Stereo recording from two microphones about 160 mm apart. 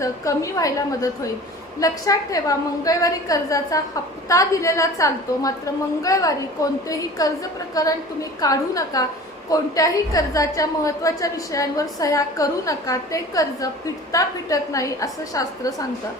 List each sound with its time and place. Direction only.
0.0 s a woman's voice: 20° left (ahead or behind)